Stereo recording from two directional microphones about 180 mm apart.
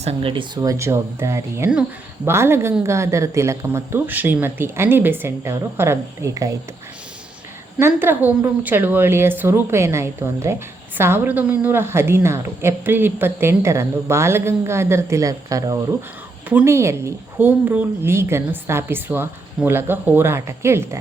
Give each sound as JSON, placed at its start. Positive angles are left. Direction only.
{"t": 0.0, "sound": "a woman's voice", "side_deg": -35}
{"t": 7.8, "sound": "a woman's voice", "side_deg": -15}